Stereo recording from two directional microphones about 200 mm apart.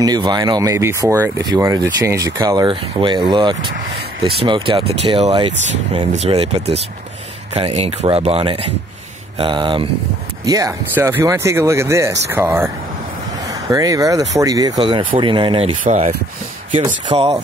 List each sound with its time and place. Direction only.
0.0 s speech: 20° right (ahead or behind)
15.8 s speech: 40° right (ahead or behind)
16.8 s speech: 20° right (ahead or behind)